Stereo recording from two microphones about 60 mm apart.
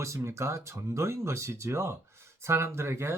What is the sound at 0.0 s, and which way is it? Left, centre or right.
Speech, right.